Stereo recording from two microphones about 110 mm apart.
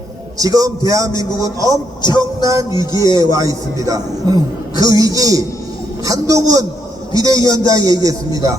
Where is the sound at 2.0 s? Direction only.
40° left (ahead or behind).